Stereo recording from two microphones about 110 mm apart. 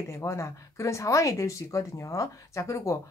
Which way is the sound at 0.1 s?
25° left (ahead or behind).